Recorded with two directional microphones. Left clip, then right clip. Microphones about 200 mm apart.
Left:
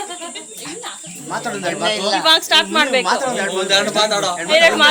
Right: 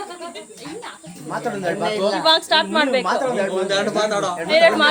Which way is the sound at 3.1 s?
40° right (ahead or behind).